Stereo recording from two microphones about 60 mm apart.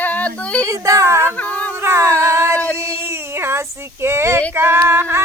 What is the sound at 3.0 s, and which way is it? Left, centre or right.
Child singing, right.